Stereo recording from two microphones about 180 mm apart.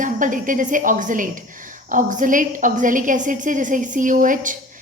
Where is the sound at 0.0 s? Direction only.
45° right (ahead or behind).